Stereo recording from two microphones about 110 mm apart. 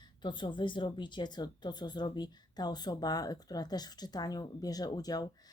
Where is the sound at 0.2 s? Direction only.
45° left (ahead or behind).